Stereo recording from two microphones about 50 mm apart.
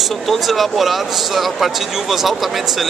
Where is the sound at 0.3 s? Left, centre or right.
Centre.